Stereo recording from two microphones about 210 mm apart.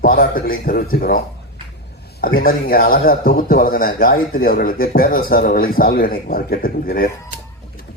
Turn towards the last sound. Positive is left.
turn(degrees=45)  # may be behind; listen again after turning